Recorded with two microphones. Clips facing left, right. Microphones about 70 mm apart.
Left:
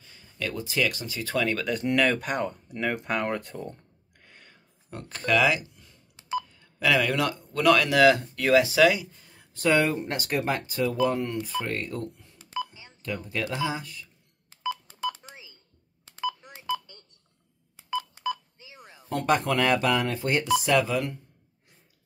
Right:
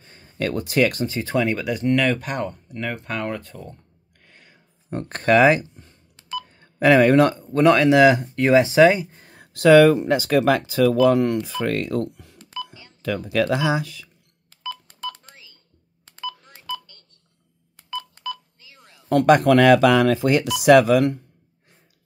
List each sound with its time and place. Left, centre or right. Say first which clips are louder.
0.0 s speech: right 7 dB; right
1.0 s speech: right 8 dB; right
1.3 s speech: right 4 dB; right
1.6 s speech: right 4 dB; centre
4.2 s a sound: right 1 dB; centre
5.0 s speech: right 8 dB; right
6.1 s telephone dialing: left 1 dB; left
6.4 s telephone dialing: right 14 dB; right
7.6 s speech: right 5 dB; right
9.1 s a sound: right 7 dB; right
10.4 s speech: right 9 dB; right
14.6 s telephone dialing: left 2 dB; centre
19.0 s speech: right 10 dB; right